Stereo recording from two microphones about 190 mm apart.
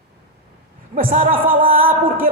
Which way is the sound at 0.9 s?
45° right (ahead or behind).